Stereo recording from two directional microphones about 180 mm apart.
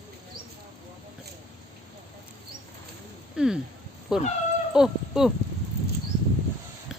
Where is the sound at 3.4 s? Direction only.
5° right (ahead or behind).